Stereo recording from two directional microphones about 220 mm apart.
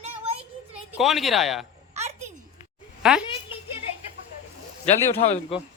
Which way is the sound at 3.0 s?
5° right (ahead or behind).